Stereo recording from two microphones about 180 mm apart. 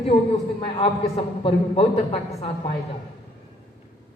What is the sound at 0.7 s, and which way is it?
A woman's voice, 30° left (ahead or behind).